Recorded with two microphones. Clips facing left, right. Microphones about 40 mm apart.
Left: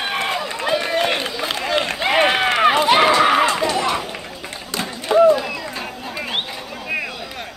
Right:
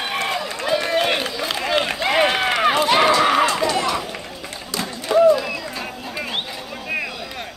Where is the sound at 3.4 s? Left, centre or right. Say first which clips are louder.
Left 1 dB; left.